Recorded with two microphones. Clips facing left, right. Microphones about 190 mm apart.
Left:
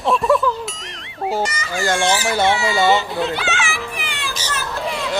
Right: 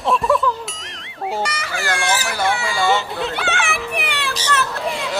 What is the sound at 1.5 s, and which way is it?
Speech, 65° right (ahead or behind).